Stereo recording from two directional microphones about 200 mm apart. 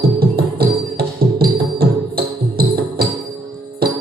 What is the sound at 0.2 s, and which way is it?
Music, 50° right (ahead or behind).